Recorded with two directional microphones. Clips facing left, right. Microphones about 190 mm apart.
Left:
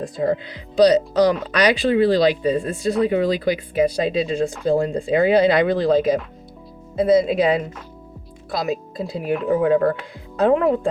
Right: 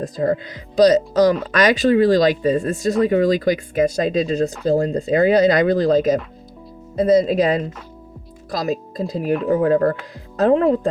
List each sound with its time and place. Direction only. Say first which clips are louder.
0.0 s speech: right 1 dB; 45° right (ahead or behind)